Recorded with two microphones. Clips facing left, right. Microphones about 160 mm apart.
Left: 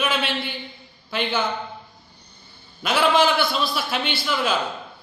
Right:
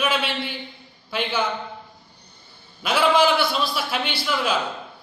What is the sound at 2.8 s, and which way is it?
A man's voice, 10° right (ahead or behind).